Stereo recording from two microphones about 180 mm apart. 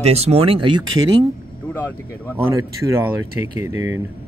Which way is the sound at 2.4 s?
15° right (ahead or behind).